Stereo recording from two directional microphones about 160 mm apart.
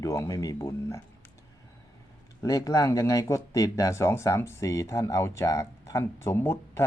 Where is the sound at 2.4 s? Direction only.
20° left (ahead or behind).